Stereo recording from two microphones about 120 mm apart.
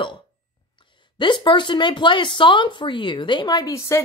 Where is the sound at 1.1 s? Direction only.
40° left (ahead or behind).